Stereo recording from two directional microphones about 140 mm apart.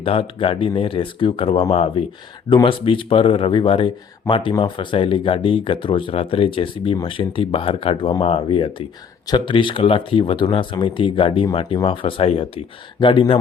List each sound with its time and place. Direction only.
0.0 s speech: 40° left (ahead or behind)